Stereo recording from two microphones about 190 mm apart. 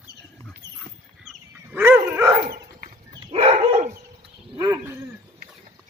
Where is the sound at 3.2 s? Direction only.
30° right (ahead or behind).